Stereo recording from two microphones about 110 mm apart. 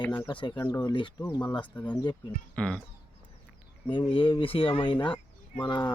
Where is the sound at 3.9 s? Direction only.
50° left (ahead or behind).